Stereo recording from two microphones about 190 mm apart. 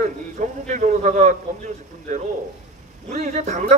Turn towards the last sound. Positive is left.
turn(degrees=-40)  # may be behind; listen again after turning